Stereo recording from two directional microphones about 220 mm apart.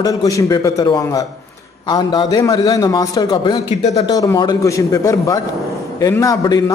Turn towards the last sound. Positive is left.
turn(degrees=15)  # may be behind; listen again after turning